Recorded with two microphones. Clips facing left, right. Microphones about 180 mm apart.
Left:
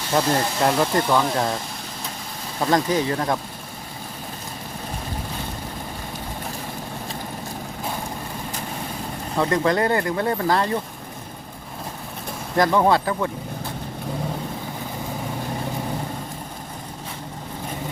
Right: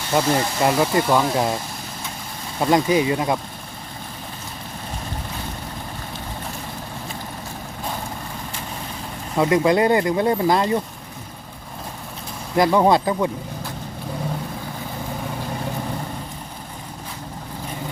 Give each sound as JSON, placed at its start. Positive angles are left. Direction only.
{"t": 0.1, "sound": "speech", "side_deg": -5}
{"t": 2.6, "sound": "speech", "side_deg": -10}
{"t": 9.4, "sound": "speech", "side_deg": -10}
{"t": 12.5, "sound": "speech", "side_deg": -15}